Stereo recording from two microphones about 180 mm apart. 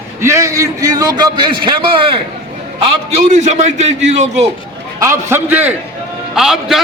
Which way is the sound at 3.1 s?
40° right (ahead or behind).